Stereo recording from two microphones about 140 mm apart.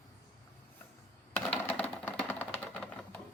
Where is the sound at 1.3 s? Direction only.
5° left (ahead or behind).